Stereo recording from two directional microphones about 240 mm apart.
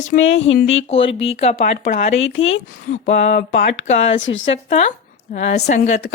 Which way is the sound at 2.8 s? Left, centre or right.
Left.